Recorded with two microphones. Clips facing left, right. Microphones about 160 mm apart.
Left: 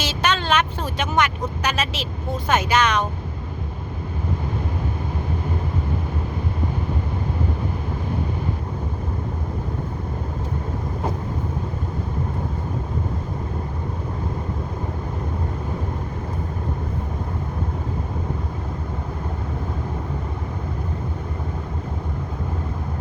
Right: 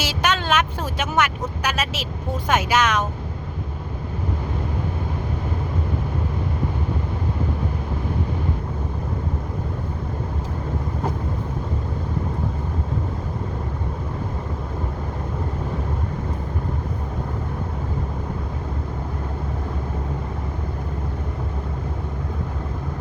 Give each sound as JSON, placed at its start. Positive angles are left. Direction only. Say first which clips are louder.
{"t": 0.0, "sound": "vehicle", "louder": "even", "side_deg": -10}
{"t": 1.6, "sound": "speech", "louder": "even", "side_deg": -10}